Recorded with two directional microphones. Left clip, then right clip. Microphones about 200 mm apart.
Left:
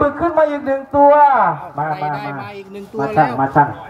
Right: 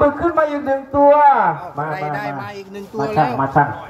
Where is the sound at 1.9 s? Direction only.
10° left (ahead or behind).